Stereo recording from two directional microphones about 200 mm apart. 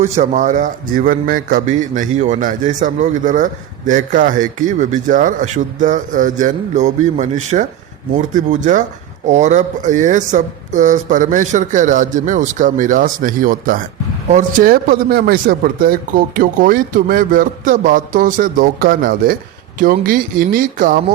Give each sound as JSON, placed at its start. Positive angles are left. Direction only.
{"t": 0.0, "sound": "speech", "side_deg": -35}